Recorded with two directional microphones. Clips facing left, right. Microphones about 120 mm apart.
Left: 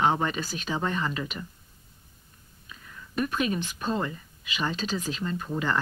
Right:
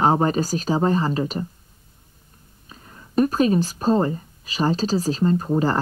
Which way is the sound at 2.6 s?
35° right (ahead or behind).